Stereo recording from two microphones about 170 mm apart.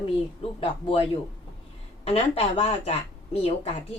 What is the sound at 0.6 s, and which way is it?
Speech, 30° left (ahead or behind).